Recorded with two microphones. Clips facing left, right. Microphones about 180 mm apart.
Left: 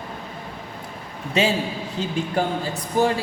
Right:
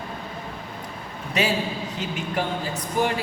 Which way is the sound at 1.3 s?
25° left (ahead or behind).